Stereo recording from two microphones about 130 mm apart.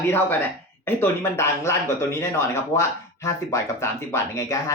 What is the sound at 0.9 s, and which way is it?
Speech, 15° left (ahead or behind).